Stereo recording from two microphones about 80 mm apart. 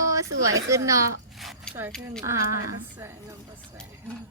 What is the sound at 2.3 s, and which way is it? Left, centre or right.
Speech, right.